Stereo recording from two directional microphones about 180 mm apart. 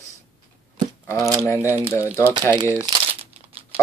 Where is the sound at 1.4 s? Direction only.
15° left (ahead or behind).